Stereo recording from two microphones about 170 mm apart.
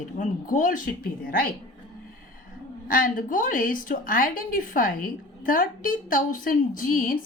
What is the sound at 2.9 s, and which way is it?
A woman's voice, 55° left (ahead or behind).